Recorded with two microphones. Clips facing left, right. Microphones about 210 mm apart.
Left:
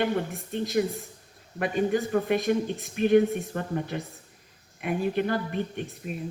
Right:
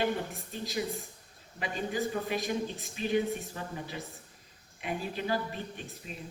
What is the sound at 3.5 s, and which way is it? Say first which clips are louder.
A man's voice: left 9 dB; 55° left (ahead or behind).